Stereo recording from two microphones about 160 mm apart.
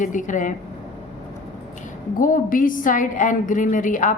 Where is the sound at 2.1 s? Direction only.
55° left (ahead or behind).